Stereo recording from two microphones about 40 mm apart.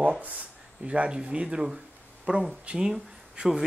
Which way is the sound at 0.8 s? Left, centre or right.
Right.